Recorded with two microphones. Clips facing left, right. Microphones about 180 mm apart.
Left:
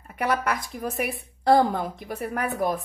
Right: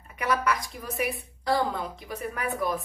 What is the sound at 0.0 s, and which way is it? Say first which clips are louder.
A woman's voice: left 2 dB; 55° left (ahead or behind).